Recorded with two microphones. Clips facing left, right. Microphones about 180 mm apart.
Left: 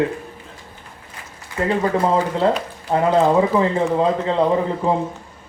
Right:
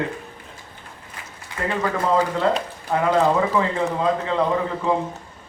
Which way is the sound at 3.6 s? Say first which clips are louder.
Left 4 dB; 30° left (ahead or behind).